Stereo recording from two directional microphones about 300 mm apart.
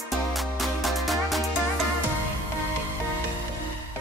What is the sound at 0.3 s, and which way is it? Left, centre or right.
Music, centre.